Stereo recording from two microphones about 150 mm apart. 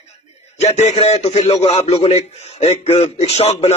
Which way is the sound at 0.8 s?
45° left (ahead or behind).